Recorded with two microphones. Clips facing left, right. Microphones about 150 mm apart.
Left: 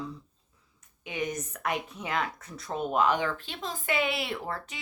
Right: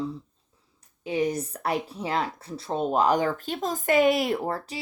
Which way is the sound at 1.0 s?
35° right (ahead or behind).